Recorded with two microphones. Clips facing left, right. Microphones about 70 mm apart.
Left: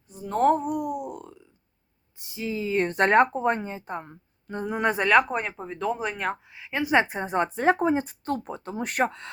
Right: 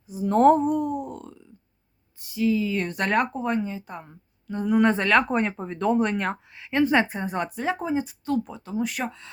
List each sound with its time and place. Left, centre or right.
0.1 s speech: centre
2.1 s speech: left
4.6 s speech: left
5.3 s speech: centre
6.9 s a woman's voice: left
7.6 s speech: left